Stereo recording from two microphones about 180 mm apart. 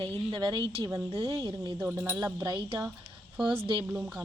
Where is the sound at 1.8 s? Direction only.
10° right (ahead or behind).